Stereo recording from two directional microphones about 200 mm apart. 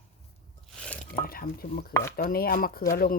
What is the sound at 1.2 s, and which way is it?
Speech, 45° left (ahead or behind).